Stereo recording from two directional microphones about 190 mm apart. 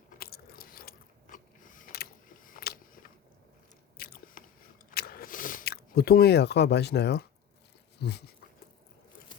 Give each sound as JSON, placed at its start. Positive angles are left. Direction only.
{"t": 0.2, "sound": "biting", "side_deg": 55}
{"t": 8.0, "sound": "speech", "side_deg": 60}